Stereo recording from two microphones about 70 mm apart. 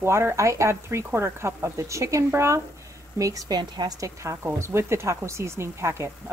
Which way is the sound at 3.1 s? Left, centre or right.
Right.